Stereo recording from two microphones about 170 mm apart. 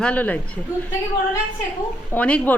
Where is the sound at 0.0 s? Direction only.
10° left (ahead or behind).